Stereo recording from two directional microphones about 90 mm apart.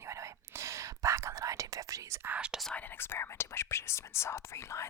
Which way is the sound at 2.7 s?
20° left (ahead or behind).